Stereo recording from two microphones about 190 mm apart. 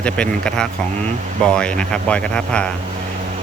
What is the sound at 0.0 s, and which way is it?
Speech, 5° left (ahead or behind).